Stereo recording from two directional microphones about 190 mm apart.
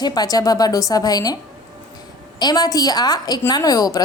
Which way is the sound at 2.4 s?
20° left (ahead or behind).